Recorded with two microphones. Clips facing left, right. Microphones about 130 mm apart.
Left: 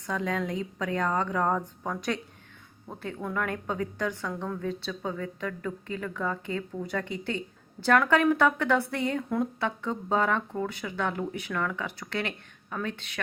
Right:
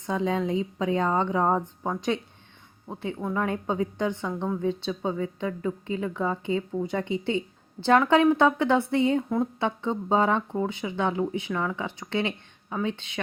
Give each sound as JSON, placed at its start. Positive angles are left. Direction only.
{"t": 0.0, "sound": "a woman's voice", "side_deg": -25}
{"t": 3.3, "sound": "a woman's voice", "side_deg": -25}